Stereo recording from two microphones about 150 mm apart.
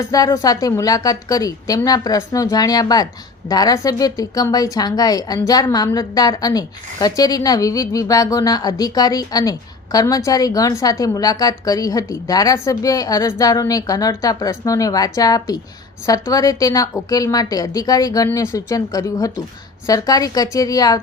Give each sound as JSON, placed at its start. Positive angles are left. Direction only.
{"t": 0.1, "sound": "a woman's voice", "side_deg": 25}